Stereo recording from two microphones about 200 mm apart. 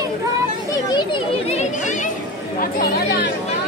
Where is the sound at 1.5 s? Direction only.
35° left (ahead or behind).